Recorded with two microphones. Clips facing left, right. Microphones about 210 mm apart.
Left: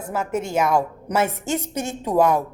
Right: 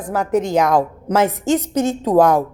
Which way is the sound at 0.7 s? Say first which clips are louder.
Right 4 dB; 90° right.